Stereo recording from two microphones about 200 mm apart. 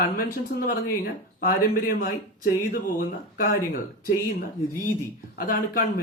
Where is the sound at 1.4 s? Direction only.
45° left (ahead or behind).